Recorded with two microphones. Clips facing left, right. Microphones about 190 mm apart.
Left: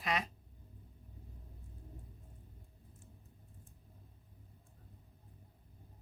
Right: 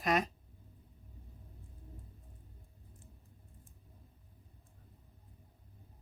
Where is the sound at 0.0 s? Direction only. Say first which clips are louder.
Right 6 dB; 45° right (ahead or behind).